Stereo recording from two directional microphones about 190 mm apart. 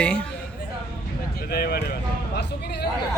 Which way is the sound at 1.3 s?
55° left (ahead or behind).